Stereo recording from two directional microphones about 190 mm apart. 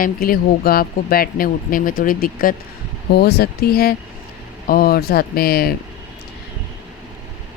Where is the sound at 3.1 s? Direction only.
60° left (ahead or behind).